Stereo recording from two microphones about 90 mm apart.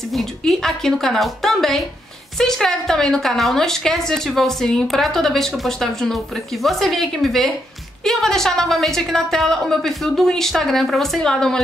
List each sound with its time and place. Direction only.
0.1 s a woman's voice: 5° left (ahead or behind)